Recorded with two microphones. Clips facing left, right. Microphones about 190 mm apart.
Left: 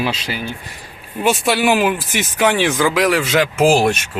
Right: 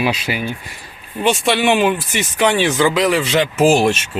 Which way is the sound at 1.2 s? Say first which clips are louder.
Even; centre (ahead or behind).